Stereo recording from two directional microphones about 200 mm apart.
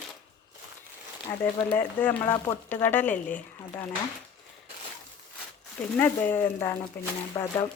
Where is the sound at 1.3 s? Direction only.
10° left (ahead or behind).